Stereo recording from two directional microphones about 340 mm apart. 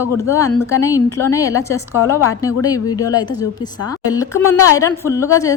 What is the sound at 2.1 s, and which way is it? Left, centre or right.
Speech, left.